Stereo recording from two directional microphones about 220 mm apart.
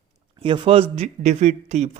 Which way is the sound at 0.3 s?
25° right (ahead or behind).